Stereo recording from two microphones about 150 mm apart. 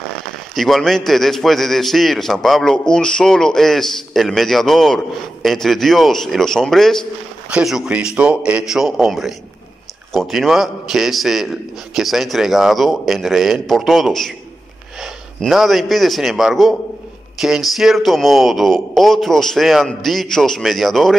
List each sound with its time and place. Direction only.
0.6 s a man's voice: centre (ahead or behind)